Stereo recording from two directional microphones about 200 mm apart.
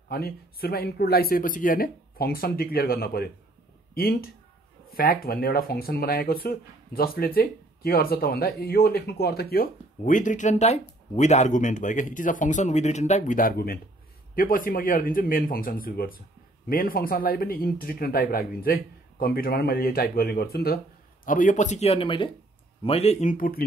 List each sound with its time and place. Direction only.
0.1 s speech: 50° left (ahead or behind)